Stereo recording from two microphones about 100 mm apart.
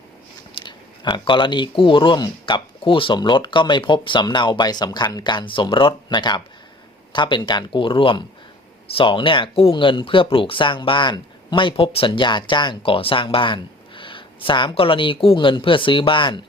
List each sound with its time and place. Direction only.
0.6 s speech: 50° left (ahead or behind)